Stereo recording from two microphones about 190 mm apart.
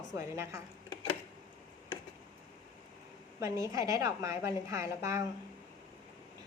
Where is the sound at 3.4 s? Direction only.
15° right (ahead or behind).